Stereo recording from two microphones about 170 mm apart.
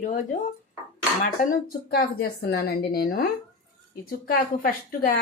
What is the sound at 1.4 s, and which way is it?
Speech, 60° left (ahead or behind).